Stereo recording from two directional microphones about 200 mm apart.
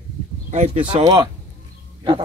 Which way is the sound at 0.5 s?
35° right (ahead or behind).